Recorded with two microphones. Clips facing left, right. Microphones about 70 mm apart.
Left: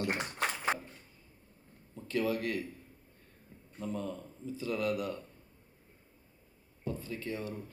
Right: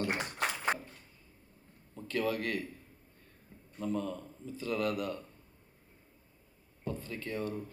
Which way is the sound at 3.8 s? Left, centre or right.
Right.